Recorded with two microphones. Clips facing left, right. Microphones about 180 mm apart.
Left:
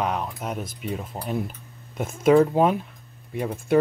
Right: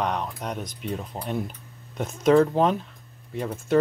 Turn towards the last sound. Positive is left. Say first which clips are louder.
# left 2 dB
turn(degrees=10)  # may be behind; listen again after turning